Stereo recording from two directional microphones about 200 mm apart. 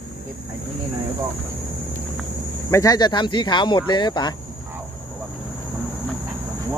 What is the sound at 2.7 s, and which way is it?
Speech, 15° left (ahead or behind).